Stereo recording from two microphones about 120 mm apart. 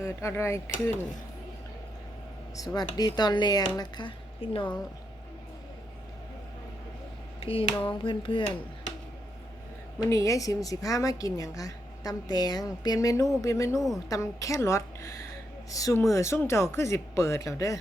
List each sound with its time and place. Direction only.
0.0 s a woman's voice: 25° left (ahead or behind)
2.6 s speech: 35° left (ahead or behind)
7.3 s speech: 50° left (ahead or behind)
10.1 s a woman's voice: 25° left (ahead or behind)
13.7 s a woman's voice: centre (ahead or behind)
14.1 s a woman's voice: 25° left (ahead or behind)